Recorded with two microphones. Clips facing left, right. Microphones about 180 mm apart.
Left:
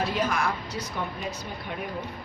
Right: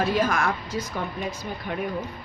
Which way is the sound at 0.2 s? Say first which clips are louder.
Right 3 dB; 50° right (ahead or behind).